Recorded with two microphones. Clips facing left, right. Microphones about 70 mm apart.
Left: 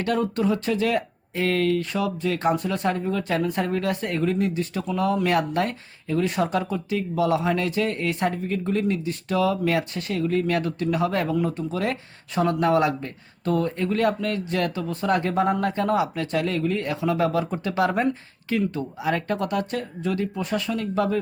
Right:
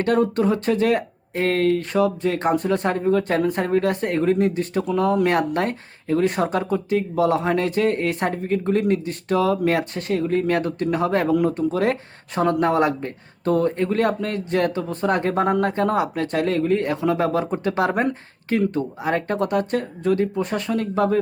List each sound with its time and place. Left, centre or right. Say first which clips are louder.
0.0 s speech: right 4 dB; right